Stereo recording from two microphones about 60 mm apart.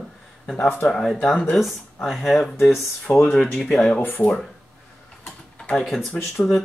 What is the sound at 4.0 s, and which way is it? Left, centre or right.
Speech, left.